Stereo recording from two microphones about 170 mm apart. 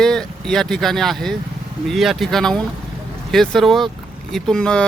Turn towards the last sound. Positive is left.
turn(degrees=5)  # may be behind; listen again after turning